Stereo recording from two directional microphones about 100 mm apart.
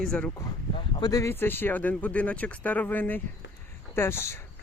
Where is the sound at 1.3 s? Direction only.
20° left (ahead or behind).